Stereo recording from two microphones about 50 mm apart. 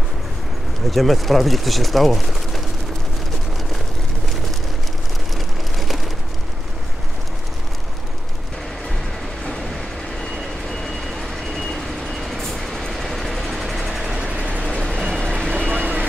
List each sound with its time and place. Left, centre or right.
0.8 s speech: centre
11.5 s vehicle: centre
12.9 s train: centre
13.9 s vehicle: centre
14.2 s vehicle: right
14.7 s vehicle: centre
15.0 s vehicle: centre
15.7 s vehicle: right